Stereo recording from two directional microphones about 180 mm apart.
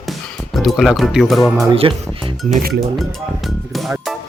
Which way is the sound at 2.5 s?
60° right (ahead or behind).